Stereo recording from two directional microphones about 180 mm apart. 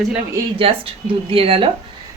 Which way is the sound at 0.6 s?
30° right (ahead or behind).